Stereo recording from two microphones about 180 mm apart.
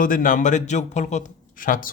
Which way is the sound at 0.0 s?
50° left (ahead or behind).